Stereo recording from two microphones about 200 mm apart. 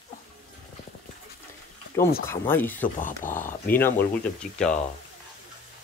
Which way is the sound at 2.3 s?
10° left (ahead or behind).